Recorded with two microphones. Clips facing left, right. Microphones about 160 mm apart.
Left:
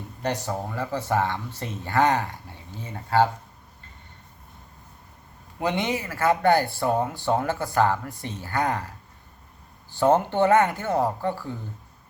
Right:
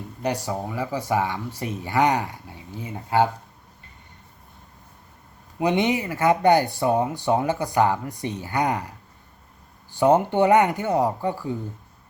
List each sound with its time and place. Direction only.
0.2 s speech: 10° right (ahead or behind)
5.5 s speech: 15° right (ahead or behind)
9.9 s speech: 15° right (ahead or behind)